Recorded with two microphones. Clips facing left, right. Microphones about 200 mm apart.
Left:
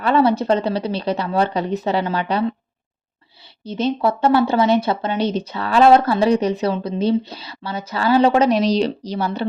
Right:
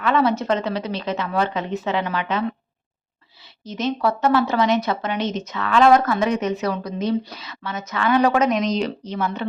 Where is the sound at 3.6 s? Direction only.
30° left (ahead or behind).